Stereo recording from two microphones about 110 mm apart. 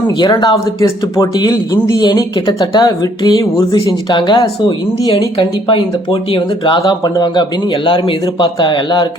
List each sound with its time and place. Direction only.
0.2 s speech: 45° left (ahead or behind)
4.1 s speech: 45° left (ahead or behind)